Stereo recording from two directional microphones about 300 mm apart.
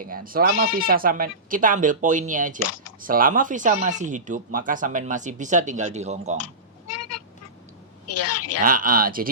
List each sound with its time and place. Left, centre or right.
0.0 s speech: right
2.6 s speech: left
3.0 s speech: right
6.3 s meow: left
8.0 s a sound: left
8.6 s speech: right